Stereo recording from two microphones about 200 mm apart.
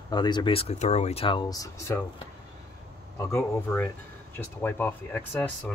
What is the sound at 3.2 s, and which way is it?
Speech, 15° left (ahead or behind).